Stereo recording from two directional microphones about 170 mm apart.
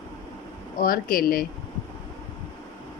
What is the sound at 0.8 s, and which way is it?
Speech, 60° left (ahead or behind).